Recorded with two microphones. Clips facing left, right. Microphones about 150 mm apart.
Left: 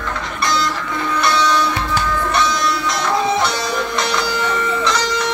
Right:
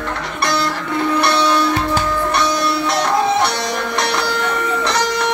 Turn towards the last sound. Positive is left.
turn(degrees=-60)  # may be behind; listen again after turning